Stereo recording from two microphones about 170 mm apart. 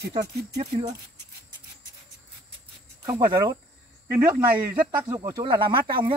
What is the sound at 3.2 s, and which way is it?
Speech, 25° right (ahead or behind).